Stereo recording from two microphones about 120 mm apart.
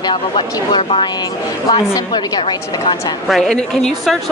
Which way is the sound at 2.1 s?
40° left (ahead or behind).